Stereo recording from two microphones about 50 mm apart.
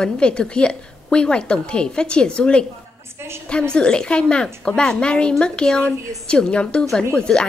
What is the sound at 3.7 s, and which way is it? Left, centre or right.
A woman's voice, centre.